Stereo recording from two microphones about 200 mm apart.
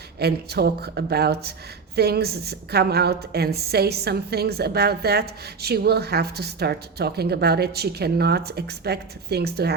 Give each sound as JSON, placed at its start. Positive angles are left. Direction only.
{"t": 0.2, "sound": "a woman's voice", "side_deg": -55}